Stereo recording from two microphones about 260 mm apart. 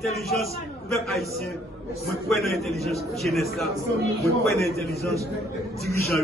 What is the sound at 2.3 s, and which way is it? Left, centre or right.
A man's voice, centre.